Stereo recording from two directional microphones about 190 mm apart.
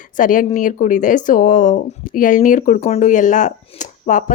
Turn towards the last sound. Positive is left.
turn(degrees=40)  # may be behind; listen again after turning